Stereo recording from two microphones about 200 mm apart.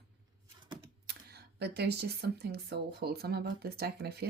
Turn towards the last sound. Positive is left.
turn(degrees=-50)  # may be behind; listen again after turning